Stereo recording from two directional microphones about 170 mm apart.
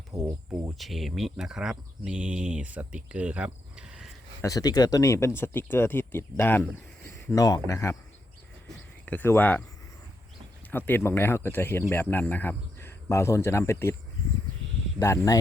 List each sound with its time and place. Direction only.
0.8 s speech: centre (ahead or behind)
4.4 s speech: 20° left (ahead or behind)
9.0 s speech: 10° left (ahead or behind)
10.7 s speech: 10° left (ahead or behind)
14.9 s speech: 15° left (ahead or behind)